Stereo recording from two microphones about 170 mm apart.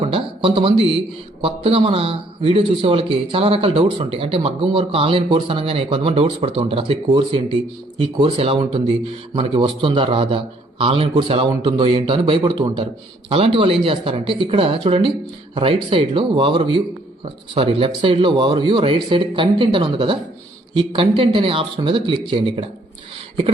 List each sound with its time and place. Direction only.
0.0 s a man's voice: 35° right (ahead or behind)